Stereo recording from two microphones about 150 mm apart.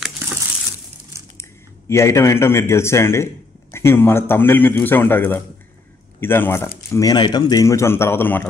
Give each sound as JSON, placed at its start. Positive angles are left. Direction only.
{"t": 1.4, "sound": "speech", "side_deg": 20}